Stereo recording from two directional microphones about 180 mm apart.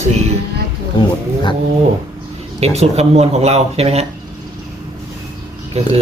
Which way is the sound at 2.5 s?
35° right (ahead or behind).